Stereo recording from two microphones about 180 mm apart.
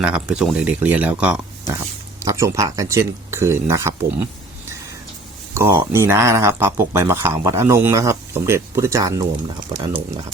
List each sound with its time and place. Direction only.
0.0 s speech: 5° right (ahead or behind)
5.5 s speech: 15° right (ahead or behind)